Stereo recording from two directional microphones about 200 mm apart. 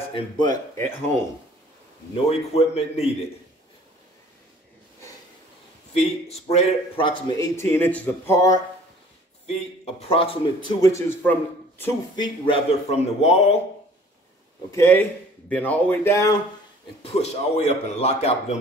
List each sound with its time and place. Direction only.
0.1 s a man's voice: 20° left (ahead or behind)
2.2 s a man's voice: 30° left (ahead or behind)
6.4 s a man's voice: 30° left (ahead or behind)
9.5 s a man's voice: 30° left (ahead or behind); by 11.3 s 10° left (ahead or behind)
11.8 s a man's voice: 25° left (ahead or behind)
14.7 s a man's voice: 15° left (ahead or behind)
17.0 s a man's voice: 30° left (ahead or behind)